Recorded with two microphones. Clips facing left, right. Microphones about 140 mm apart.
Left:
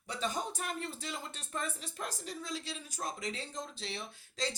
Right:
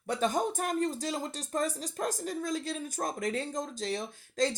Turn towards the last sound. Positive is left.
turn(degrees=-45)  # may be behind; listen again after turning